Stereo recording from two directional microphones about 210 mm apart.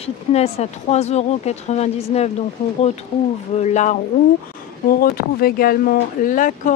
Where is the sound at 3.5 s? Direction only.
35° left (ahead or behind).